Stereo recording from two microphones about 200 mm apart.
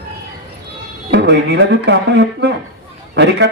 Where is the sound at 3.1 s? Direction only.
60° right (ahead or behind).